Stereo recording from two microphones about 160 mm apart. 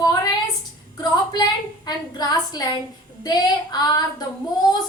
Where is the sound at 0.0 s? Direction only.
25° left (ahead or behind).